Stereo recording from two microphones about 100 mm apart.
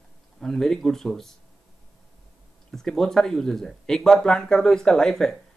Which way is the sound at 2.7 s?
5° left (ahead or behind).